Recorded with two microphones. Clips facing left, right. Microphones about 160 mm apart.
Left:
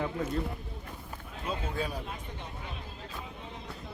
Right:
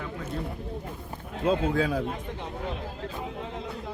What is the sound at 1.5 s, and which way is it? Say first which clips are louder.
Speech: right 10 dB; 90° right.